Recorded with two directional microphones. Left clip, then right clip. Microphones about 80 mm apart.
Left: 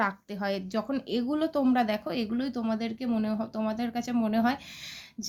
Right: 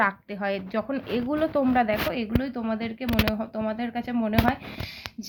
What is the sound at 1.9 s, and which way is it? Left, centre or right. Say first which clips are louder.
Speech: right 5 dB; left.